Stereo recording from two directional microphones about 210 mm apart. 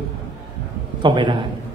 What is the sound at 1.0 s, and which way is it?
Speech, 20° right (ahead or behind).